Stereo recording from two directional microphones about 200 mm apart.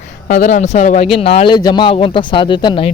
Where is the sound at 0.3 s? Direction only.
40° left (ahead or behind).